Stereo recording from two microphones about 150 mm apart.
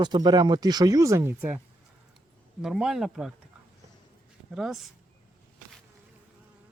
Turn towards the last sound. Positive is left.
turn(degrees=0)  # may be behind; listen again after turning